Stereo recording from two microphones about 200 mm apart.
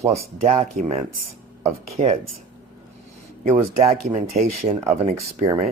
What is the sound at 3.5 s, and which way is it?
Speech, 30° right (ahead or behind).